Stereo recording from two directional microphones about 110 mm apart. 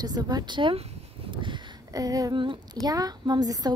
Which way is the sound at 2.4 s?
45° right (ahead or behind).